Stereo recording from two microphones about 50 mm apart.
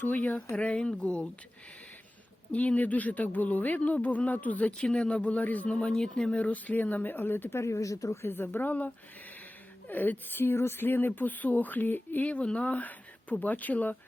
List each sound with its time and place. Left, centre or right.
0.0 s speech: left
0.5 s speech: left
2.5 s speech: left
4.9 s speech: centre
5.1 s speech: left
5.7 s speech: centre
6.4 s speech: left
7.6 s speech: left
8.2 s a woman's voice: left
9.9 s speech: left
12.2 s speech: left